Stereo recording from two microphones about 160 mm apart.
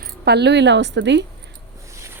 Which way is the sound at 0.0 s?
90° right.